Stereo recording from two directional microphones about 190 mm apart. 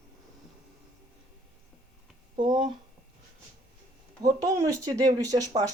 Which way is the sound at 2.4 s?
25° right (ahead or behind).